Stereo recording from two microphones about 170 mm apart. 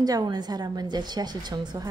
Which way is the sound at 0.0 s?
25° right (ahead or behind).